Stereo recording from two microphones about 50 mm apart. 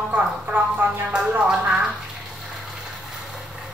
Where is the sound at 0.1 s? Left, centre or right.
Right.